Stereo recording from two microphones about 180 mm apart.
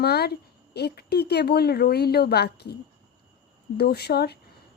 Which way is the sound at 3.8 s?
60° left (ahead or behind).